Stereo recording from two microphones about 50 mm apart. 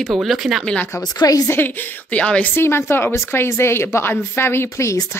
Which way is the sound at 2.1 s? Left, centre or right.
Left.